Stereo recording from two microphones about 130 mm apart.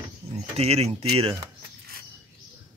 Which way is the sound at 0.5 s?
50° right (ahead or behind).